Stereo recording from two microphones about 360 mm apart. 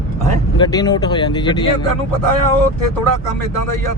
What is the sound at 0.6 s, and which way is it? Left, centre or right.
Speech, centre.